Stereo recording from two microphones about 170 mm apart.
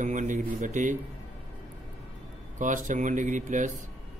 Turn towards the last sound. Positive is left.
turn(degrees=-45)  # may be behind; listen again after turning